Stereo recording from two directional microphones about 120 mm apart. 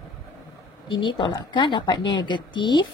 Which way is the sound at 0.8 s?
40° left (ahead or behind).